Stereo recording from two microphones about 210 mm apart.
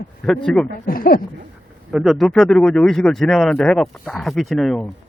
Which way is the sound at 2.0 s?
Centre (ahead or behind).